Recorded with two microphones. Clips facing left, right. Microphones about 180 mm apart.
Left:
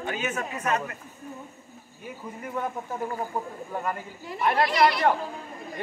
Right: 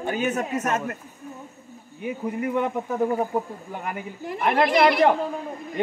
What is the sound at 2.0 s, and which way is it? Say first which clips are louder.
A man's voice: right 11 dB; 70° right (ahead or behind).